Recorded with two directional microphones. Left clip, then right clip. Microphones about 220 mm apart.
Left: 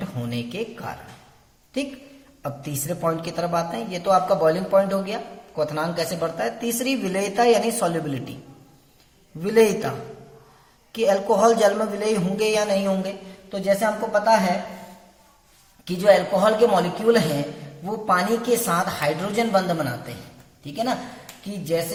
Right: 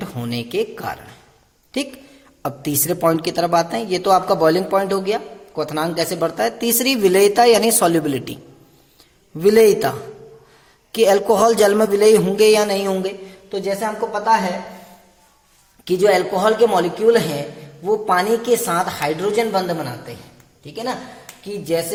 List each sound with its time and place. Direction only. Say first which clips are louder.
0.0 s a woman's voice: right 4 dB; 45° right (ahead or behind)
2.4 s a woman's voice: right 8 dB; 50° right (ahead or behind)
9.4 s a woman's voice: right 6 dB; 50° right (ahead or behind)
10.9 s a woman's voice: right 5 dB; 50° right (ahead or behind); by 14.5 s 25° right (ahead or behind)
15.8 s a woman's voice: right 2 dB; 40° right (ahead or behind)